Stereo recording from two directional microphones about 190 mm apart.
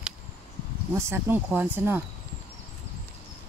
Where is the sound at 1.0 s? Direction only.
10° right (ahead or behind).